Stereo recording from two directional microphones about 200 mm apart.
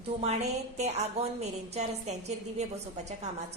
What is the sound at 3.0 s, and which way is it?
Speech, 35° right (ahead or behind).